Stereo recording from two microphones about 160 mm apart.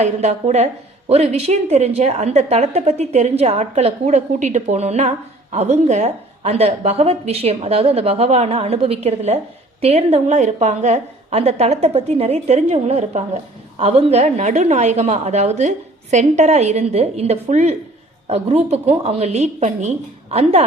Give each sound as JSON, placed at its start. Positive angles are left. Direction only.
{"t": 0.0, "sound": "a woman's voice", "side_deg": -45}